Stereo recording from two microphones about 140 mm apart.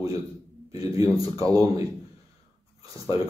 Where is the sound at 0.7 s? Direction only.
25° right (ahead or behind).